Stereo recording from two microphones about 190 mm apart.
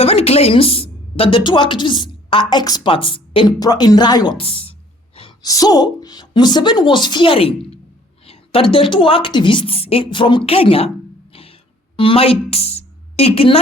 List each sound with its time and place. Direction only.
0.0 s a woman's voice: 30° left (ahead or behind)
11.9 s a woman's voice: 30° left (ahead or behind)